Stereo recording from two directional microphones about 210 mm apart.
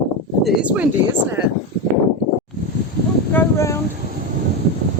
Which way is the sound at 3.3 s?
10° left (ahead or behind).